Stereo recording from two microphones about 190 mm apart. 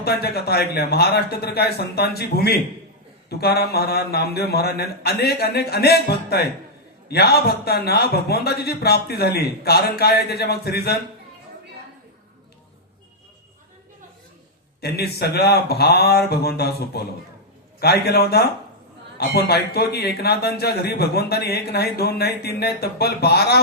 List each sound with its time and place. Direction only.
0.0 s speech: 55° left (ahead or behind)
14.8 s speech: 55° left (ahead or behind)